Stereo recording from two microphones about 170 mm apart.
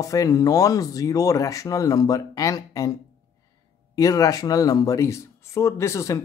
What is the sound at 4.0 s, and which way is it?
Speech, 20° left (ahead or behind).